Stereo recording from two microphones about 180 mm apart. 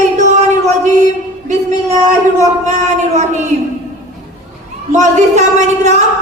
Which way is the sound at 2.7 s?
40° right (ahead or behind).